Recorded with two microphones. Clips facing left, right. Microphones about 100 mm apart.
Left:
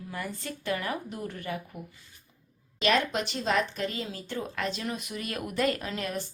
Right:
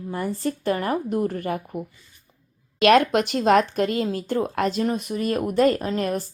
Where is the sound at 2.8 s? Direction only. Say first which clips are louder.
Right 10 dB; 60° right (ahead or behind).